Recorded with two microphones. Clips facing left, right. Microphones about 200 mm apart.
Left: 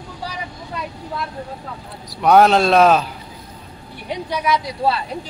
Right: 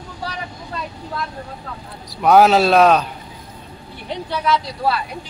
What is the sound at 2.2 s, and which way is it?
Speech, centre (ahead or behind).